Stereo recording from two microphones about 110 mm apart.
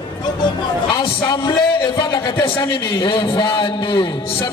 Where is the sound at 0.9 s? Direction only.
45° left (ahead or behind).